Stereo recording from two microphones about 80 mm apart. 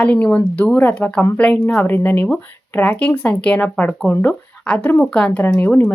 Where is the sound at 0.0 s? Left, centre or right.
Centre.